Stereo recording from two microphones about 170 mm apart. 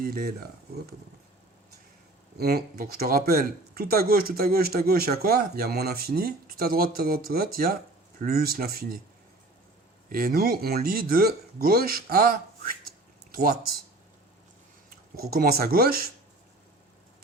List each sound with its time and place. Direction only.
0.0 s speech: 65° right (ahead or behind)
2.4 s speech: 65° right (ahead or behind)
10.1 s speech: 60° right (ahead or behind)
14.8 s speech: 60° right (ahead or behind)